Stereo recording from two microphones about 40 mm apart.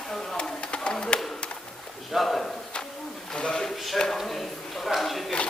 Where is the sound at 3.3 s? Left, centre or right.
Left.